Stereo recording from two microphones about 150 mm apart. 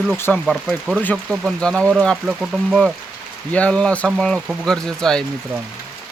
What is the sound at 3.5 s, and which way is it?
Speech, 10° left (ahead or behind).